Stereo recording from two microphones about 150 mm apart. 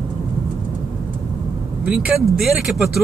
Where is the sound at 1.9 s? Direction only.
5° right (ahead or behind).